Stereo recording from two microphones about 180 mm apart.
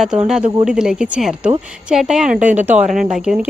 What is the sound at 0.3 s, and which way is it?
A woman's voice, 5° right (ahead or behind).